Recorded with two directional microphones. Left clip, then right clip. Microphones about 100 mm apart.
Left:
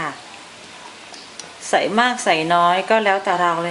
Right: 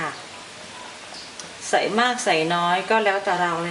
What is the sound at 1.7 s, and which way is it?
A woman's voice, 30° left (ahead or behind).